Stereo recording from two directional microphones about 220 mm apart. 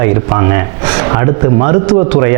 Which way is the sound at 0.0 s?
20° right (ahead or behind).